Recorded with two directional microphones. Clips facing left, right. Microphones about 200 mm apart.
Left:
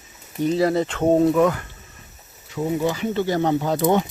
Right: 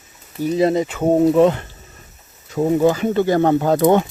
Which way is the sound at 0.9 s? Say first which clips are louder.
Right 1 dB; 5° right (ahead or behind).